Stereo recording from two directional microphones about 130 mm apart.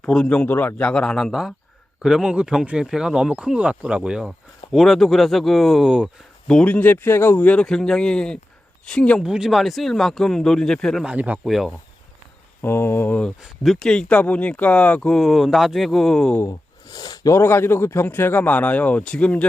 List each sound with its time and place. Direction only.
0.0 s a man's voice: 5° left (ahead or behind)
6.5 s a man's voice: 10° left (ahead or behind)
9.2 s speech: 5° right (ahead or behind)
11.0 s speech: 10° right (ahead or behind)
12.6 s a man's voice: 20° left (ahead or behind)
13.4 s speech: centre (ahead or behind)
16.3 s speech: 20° left (ahead or behind)
16.9 s a sound: 30° left (ahead or behind)
17.3 s a man's voice: 20° left (ahead or behind)